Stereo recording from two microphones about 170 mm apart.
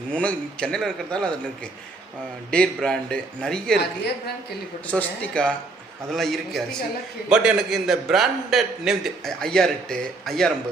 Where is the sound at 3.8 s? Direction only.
75° left (ahead or behind).